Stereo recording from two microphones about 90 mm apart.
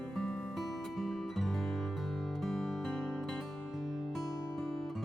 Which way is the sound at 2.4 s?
Centre (ahead or behind).